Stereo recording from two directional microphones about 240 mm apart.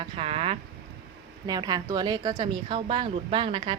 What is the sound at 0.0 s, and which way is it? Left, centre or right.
Speech, right.